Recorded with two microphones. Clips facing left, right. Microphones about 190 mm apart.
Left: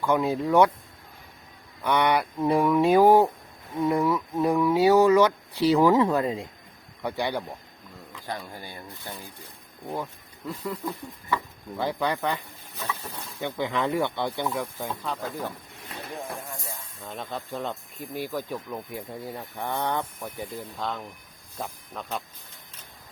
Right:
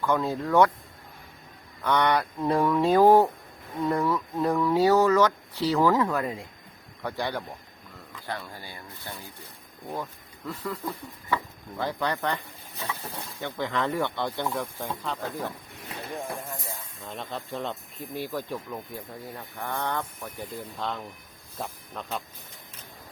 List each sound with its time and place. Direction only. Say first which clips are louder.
0.0 s speech: left 2 dB; 15° left (ahead or behind)
1.8 s speech: left 1 dB; 10° left (ahead or behind)
10.5 s speech: left 1 dB; 20° left (ahead or behind)
11.8 s speech: left 2 dB; 10° left (ahead or behind)
13.4 s speech: left 2 dB; 15° left (ahead or behind)
14.5 s speech: left 1 dB; centre (ahead or behind)
17.0 s speech: left 2 dB; centre (ahead or behind)
19.6 s speech: left 2 dB; 15° left (ahead or behind); by 22.2 s centre (ahead or behind)